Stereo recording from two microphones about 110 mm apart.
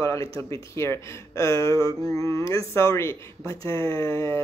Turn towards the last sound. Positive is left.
turn(degrees=25)  # may be behind; listen again after turning